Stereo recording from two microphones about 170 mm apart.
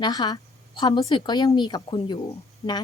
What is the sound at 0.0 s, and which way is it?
Speech, 25° left (ahead or behind).